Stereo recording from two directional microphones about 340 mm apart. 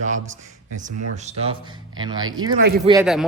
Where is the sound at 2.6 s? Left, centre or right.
Right.